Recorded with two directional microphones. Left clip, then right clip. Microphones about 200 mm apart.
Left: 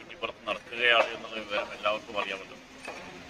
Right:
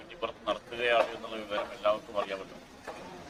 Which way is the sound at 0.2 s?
10° right (ahead or behind).